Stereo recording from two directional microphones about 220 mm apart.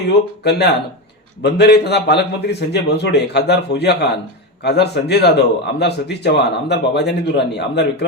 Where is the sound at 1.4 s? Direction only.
50° left (ahead or behind).